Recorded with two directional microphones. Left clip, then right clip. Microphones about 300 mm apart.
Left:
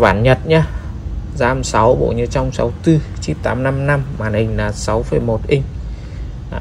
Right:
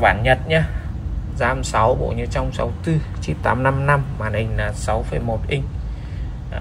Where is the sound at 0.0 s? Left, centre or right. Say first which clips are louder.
Left 3 dB; centre.